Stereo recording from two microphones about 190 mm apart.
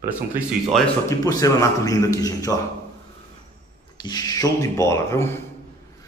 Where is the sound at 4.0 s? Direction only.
20° left (ahead or behind).